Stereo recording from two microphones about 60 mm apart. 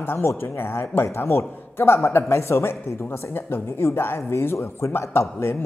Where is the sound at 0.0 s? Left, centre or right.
Left.